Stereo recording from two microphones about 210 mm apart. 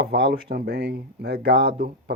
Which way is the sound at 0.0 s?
50° right (ahead or behind).